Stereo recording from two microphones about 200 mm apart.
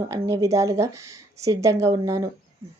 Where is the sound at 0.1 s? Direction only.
15° right (ahead or behind).